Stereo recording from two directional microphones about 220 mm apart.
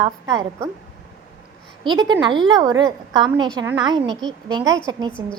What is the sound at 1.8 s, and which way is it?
A woman's voice, 20° right (ahead or behind).